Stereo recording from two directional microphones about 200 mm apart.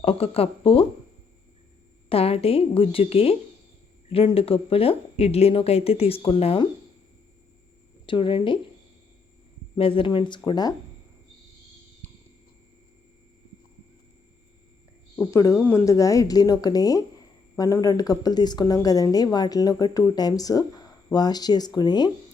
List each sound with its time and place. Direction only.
0.0 s a woman's voice: 30° left (ahead or behind)
2.0 s a woman's voice: 30° left (ahead or behind)
8.0 s a woman's voice: 25° left (ahead or behind)
9.7 s a woman's voice: 25° left (ahead or behind)
12.0 s a sound: 10° left (ahead or behind)
15.1 s a woman's voice: 10° left (ahead or behind)